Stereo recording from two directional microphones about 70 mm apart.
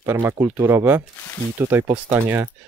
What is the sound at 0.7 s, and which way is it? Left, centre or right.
Speech, right.